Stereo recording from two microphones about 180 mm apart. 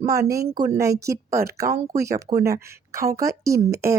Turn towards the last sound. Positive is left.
turn(degrees=-15)  # may be behind; listen again after turning